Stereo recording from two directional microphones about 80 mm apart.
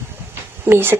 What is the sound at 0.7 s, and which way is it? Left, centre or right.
Speech, right.